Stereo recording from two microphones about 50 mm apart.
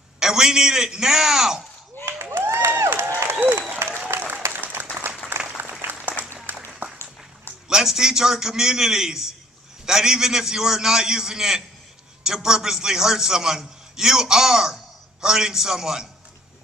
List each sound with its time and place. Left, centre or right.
0.2 s a man's voice: centre
2.0 s a sound: left
2.3 s crowd: right
3.3 s applause: right
7.6 s a man's voice: centre